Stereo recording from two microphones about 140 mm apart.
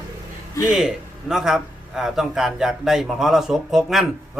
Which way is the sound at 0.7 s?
5° right (ahead or behind).